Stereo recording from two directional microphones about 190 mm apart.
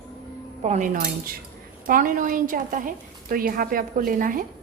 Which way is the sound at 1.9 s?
45° right (ahead or behind).